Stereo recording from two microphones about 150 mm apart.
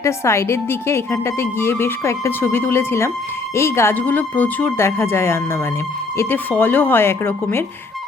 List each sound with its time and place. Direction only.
0.0 s a woman's voice: 20° left (ahead or behind)